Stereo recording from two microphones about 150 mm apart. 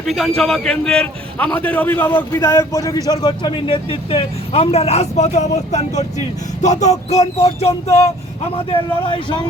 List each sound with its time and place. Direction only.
0.0 s a man's voice: centre (ahead or behind); by 9.2 s 35° left (ahead or behind)